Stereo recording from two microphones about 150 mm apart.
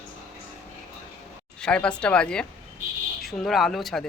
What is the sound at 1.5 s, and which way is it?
Speech, 5° left (ahead or behind).